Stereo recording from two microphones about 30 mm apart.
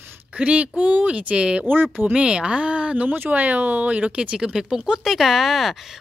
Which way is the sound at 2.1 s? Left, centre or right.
Right.